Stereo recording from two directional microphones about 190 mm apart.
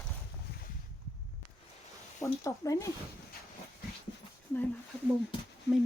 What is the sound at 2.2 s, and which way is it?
Speech, 15° left (ahead or behind).